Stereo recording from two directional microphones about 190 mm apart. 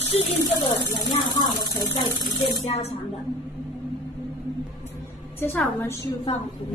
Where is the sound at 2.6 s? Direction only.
35° left (ahead or behind).